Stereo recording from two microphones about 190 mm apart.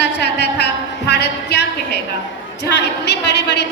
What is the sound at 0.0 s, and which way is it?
A woman's voice, 60° left (ahead or behind).